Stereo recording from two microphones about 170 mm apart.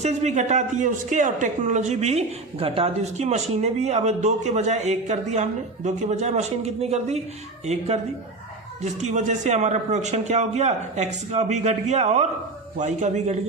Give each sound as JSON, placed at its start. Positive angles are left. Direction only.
{"t": 0.0, "sound": "a man's voice", "side_deg": -40}
{"t": 8.8, "sound": "speech", "side_deg": -40}